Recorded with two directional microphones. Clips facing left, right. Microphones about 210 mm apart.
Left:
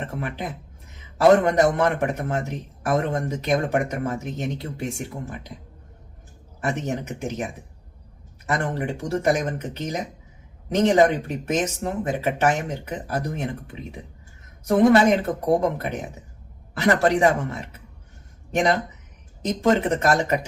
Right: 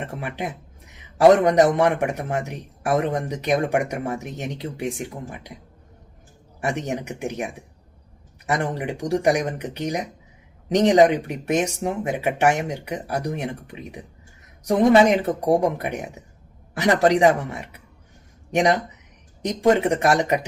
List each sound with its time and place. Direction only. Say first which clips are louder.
0.2 s a man's voice: right 1 dB; 15° right (ahead or behind)
6.6 s a man's voice: right 1 dB; 15° right (ahead or behind)
8.4 s a man's voice: right 1 dB; 15° right (ahead or behind)